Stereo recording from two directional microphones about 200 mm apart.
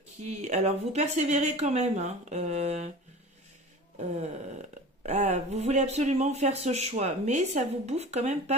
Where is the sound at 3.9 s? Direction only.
35° right (ahead or behind).